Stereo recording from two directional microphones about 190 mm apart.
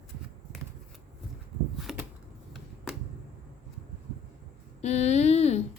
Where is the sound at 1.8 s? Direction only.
Centre (ahead or behind).